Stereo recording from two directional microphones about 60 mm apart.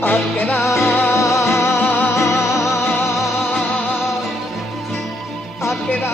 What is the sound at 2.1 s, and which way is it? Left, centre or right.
Music, left.